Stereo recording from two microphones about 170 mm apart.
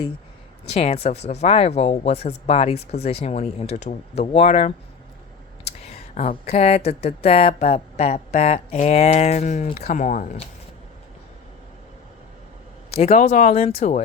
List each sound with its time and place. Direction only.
0.7 s speech: 35° left (ahead or behind)
5.8 s a sound: 35° left (ahead or behind)
6.2 s speech: 35° left (ahead or behind)
13.0 s speech: 40° left (ahead or behind)